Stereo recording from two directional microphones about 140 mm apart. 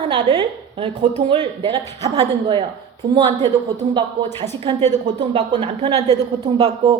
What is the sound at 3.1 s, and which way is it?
Speech, 40° right (ahead or behind).